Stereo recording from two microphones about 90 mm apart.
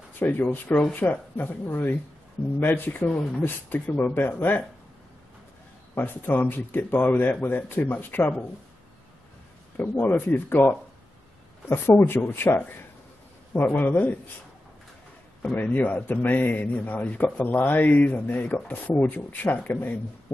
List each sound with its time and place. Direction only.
0.2 s a man's voice: 25° left (ahead or behind)
5.9 s a man's voice: 20° left (ahead or behind)
9.8 s a man's voice: 25° left (ahead or behind)
13.5 s a man's voice: 25° left (ahead or behind)
15.4 s a man's voice: 15° left (ahead or behind)
20.3 s music: 20° left (ahead or behind)